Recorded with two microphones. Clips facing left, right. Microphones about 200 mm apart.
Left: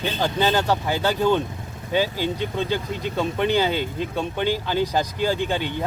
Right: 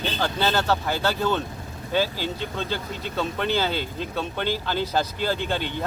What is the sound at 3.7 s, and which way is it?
Speech, 50° left (ahead or behind).